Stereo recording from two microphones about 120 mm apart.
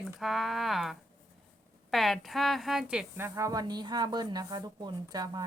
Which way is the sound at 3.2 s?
20° right (ahead or behind).